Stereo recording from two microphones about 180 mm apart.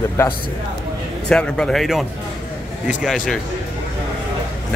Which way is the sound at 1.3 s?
5° left (ahead or behind).